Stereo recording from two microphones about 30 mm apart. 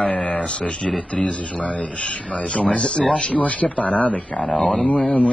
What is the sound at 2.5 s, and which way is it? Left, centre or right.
Speech, left.